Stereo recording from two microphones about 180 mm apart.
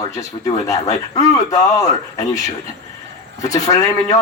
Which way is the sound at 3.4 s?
20° left (ahead or behind).